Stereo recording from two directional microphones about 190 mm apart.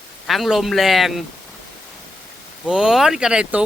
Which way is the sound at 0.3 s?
Centre (ahead or behind).